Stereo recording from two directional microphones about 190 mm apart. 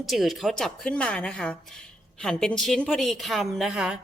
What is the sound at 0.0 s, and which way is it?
Speech, centre (ahead or behind).